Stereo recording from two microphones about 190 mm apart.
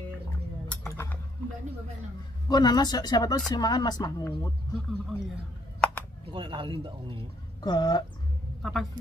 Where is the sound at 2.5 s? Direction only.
20° left (ahead or behind).